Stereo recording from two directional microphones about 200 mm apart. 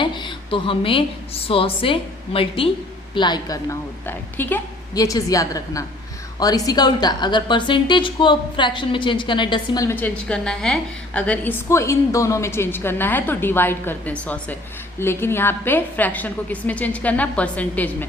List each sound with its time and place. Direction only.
0.0 s a woman's voice: 25° left (ahead or behind); by 17.9 s 10° left (ahead or behind)